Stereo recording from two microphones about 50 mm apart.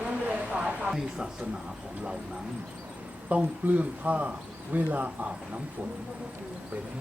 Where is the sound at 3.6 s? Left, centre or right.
Right.